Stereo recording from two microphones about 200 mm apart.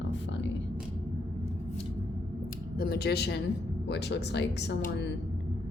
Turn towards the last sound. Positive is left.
turn(degrees=60)  # may be behind; listen again after turning